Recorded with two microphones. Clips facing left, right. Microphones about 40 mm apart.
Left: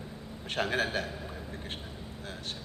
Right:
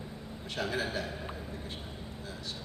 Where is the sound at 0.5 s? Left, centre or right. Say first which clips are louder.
Left 3 dB; left.